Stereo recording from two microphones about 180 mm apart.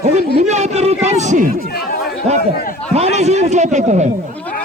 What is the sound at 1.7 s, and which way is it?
Chatter, 60° left (ahead or behind).